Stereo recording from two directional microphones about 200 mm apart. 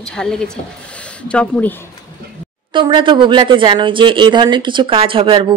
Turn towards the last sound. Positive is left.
turn(degrees=-25)  # may be behind; listen again after turning